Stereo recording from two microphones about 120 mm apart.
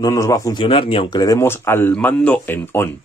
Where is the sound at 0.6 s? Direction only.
45° left (ahead or behind).